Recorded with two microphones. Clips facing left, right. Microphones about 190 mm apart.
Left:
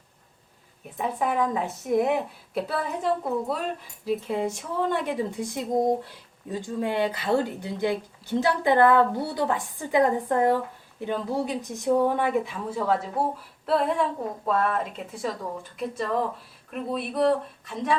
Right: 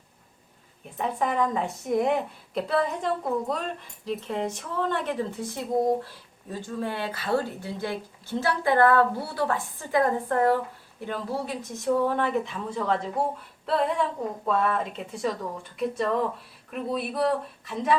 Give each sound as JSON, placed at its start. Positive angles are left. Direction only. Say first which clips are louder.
{"t": 0.9, "sound": "a woman's voice", "louder": "even", "side_deg": 5}